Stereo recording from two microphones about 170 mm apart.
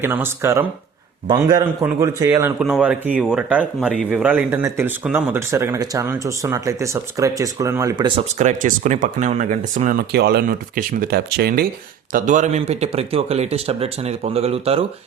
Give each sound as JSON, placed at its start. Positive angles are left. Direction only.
{"t": 0.0, "sound": "a man's voice", "side_deg": -15}
{"t": 2.6, "sound": "speech", "side_deg": -5}
{"t": 8.3, "sound": "speech", "side_deg": -45}
{"t": 12.1, "sound": "speech", "side_deg": -45}